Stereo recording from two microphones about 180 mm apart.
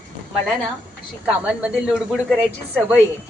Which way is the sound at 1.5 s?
5° right (ahead or behind).